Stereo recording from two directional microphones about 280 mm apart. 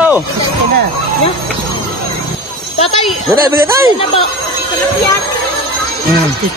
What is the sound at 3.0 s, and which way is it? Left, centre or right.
Speech, centre.